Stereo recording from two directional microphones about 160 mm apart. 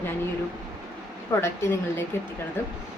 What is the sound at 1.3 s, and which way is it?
Speech, 20° left (ahead or behind).